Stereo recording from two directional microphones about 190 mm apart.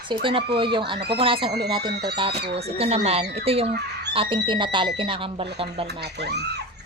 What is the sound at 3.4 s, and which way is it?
Speech, 30° right (ahead or behind).